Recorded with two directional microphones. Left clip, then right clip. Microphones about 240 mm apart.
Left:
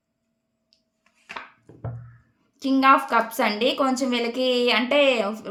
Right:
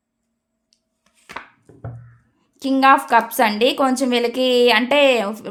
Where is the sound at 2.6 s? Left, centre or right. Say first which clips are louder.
Right 4 dB; right.